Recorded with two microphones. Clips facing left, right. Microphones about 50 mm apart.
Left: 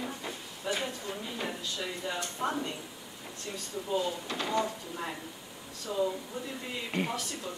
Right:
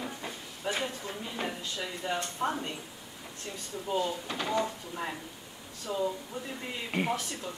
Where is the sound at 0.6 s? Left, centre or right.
Right.